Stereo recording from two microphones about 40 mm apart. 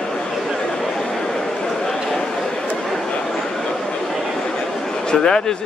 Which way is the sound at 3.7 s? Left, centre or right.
Centre.